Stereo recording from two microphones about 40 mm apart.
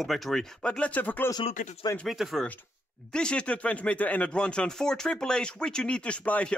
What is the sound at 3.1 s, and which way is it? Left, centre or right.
Speech, left.